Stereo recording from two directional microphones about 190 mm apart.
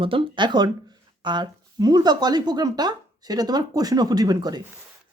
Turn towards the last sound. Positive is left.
turn(degrees=-20)  # may be behind; listen again after turning